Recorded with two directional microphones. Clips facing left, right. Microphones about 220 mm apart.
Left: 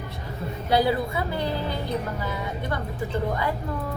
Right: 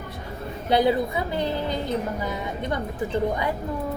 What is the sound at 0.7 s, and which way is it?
A woman's voice, 20° right (ahead or behind).